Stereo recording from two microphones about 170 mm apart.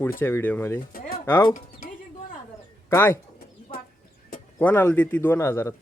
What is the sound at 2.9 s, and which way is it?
Speech, 15° left (ahead or behind).